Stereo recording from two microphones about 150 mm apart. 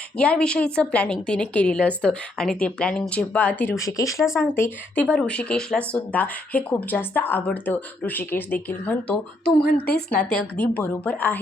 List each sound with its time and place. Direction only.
0.2 s a woman's voice: 5° left (ahead or behind)
9.6 s a woman's voice: 90° left
10.1 s a woman's voice: 10° left (ahead or behind)